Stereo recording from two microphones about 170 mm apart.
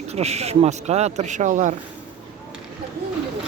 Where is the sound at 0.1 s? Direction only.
40° right (ahead or behind).